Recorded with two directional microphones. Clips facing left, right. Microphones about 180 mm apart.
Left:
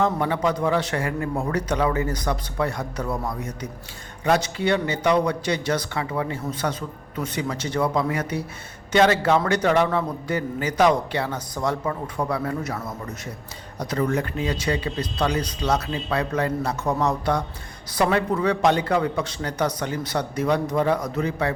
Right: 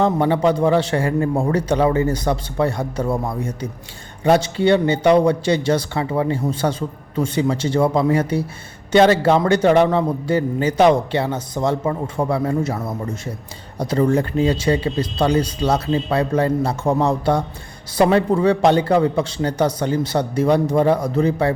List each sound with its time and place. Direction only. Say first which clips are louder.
0.0 s a man's voice: right 6 dB; 30° right (ahead or behind)